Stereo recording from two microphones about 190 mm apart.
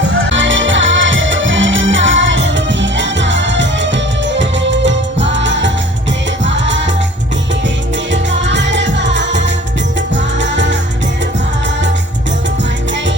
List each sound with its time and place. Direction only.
0.3 s music: 85° right
8.1 s music: 70° right (ahead or behind)
10.4 s music: 70° right (ahead or behind)